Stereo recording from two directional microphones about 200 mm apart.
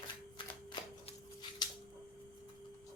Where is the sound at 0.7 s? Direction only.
20° left (ahead or behind).